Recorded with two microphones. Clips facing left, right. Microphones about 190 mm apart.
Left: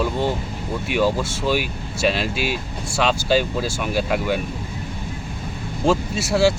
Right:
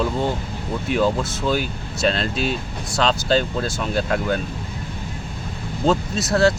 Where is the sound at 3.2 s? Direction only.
5° left (ahead or behind).